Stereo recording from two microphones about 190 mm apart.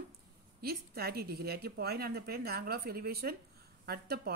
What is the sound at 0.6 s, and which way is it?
A woman's voice, 55° right (ahead or behind).